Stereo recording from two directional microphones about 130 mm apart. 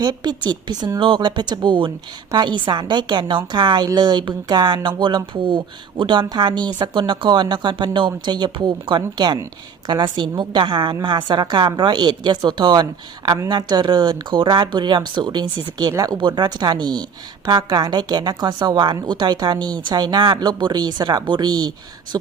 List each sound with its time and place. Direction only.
0.0 s a woman's voice: 35° right (ahead or behind)